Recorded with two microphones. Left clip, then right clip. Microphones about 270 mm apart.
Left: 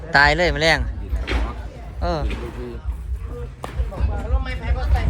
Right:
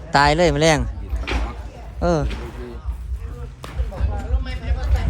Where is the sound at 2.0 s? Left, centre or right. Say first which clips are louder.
Right 4 dB; right.